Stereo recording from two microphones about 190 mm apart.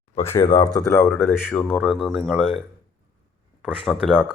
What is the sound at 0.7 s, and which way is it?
Speech, 15° left (ahead or behind).